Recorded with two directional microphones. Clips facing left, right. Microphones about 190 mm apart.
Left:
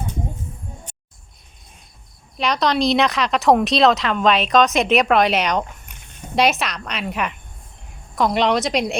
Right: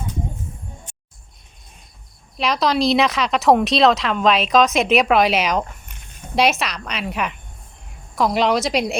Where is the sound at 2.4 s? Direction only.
Centre (ahead or behind).